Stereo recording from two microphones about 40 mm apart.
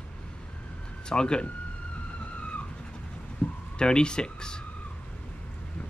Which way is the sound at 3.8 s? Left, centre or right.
Left.